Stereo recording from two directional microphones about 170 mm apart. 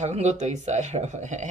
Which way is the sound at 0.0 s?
40° right (ahead or behind).